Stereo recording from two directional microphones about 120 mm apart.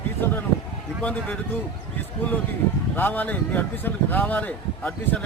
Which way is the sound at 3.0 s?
15° left (ahead or behind).